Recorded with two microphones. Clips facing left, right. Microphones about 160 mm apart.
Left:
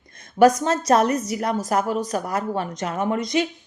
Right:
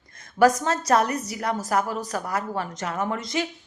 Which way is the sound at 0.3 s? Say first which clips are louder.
Left 3 dB; 20° left (ahead or behind).